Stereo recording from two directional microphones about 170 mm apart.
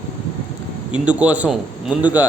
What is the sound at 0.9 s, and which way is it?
A man's voice, 5° right (ahead or behind).